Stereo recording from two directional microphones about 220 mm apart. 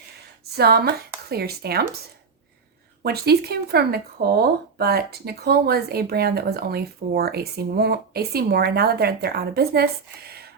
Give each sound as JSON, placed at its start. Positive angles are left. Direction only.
{"t": 0.5, "sound": "speech", "side_deg": -45}
{"t": 3.0, "sound": "speech", "side_deg": -45}